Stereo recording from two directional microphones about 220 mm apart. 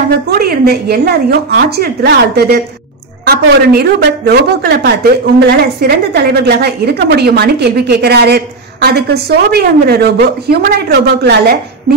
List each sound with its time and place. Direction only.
0.1 s a woman's voice: 45° right (ahead or behind)